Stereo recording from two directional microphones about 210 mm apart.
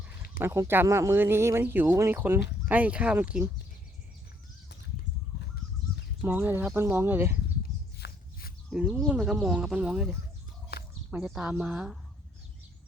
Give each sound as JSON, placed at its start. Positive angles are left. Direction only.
{"t": 0.3, "sound": "speech", "side_deg": -15}
{"t": 6.2, "sound": "speech", "side_deg": -10}
{"t": 7.9, "sound": "walk", "side_deg": 50}
{"t": 8.7, "sound": "speech", "side_deg": -5}